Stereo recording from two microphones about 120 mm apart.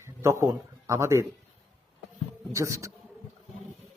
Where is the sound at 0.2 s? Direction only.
25° right (ahead or behind).